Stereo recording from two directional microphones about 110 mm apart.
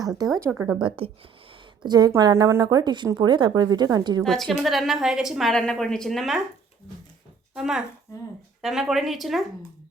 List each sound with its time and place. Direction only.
0.2 s speech: 30° right (ahead or behind)
0.8 s speech: 55° right (ahead or behind)
1.8 s speech: 40° right (ahead or behind)
4.2 s a woman's voice: 5° left (ahead or behind)
7.5 s a woman's voice: 5° right (ahead or behind)